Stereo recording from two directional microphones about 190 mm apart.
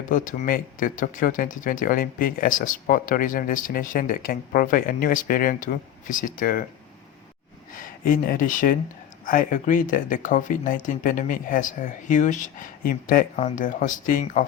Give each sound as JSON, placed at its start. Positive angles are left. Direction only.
{"t": 0.1, "sound": "speech", "side_deg": 45}
{"t": 7.8, "sound": "speech", "side_deg": 45}